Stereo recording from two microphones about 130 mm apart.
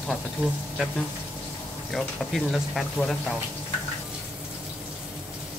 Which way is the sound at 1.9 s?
Centre (ahead or behind).